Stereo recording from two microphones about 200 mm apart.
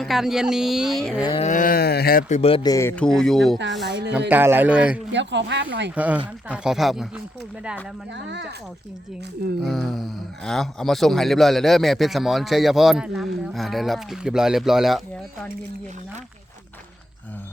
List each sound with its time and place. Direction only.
0.0 s speech: centre (ahead or behind)
1.2 s speech: 25° left (ahead or behind)
1.5 s speech: 40° left (ahead or behind)
2.4 s speech: 30° left (ahead or behind)
2.7 s speech: 10° left (ahead or behind)
3.8 s speech: 55° right (ahead or behind)
4.3 s a man's voice: 10° right (ahead or behind)
5.1 s speech: 60° right (ahead or behind)
5.9 s a man's voice: 5° right (ahead or behind)
8.1 s speech: 60° right (ahead or behind)
9.6 s speech: centre (ahead or behind)